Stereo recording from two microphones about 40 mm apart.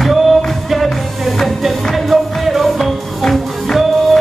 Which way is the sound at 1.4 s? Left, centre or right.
Centre.